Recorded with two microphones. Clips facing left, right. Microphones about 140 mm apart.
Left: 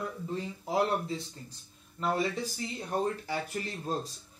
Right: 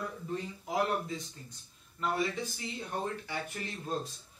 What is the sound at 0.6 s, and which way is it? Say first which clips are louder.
Speech: left 3 dB; 30° left (ahead or behind).